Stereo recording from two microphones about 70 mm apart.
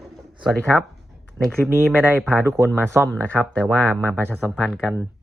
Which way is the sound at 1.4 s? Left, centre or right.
Right.